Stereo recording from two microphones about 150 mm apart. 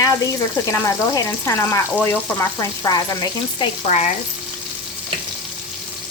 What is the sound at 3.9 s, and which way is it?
Frying, 50° left (ahead or behind).